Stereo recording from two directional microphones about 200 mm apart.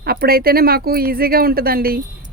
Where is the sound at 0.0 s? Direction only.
50° right (ahead or behind).